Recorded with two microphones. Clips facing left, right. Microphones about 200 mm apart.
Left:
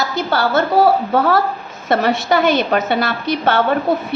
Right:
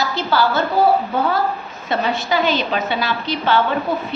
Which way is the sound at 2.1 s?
55° left (ahead or behind).